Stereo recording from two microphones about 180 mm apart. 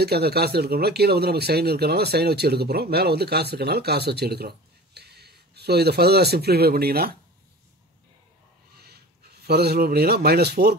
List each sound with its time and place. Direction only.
0.0 s speech: 60° right (ahead or behind)
8.7 s speech: 60° right (ahead or behind)